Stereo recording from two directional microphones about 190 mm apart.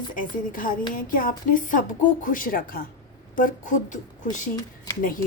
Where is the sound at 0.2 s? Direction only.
45° left (ahead or behind).